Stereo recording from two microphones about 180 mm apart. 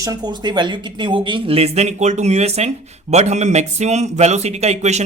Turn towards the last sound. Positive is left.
turn(degrees=-40)  # may be behind; listen again after turning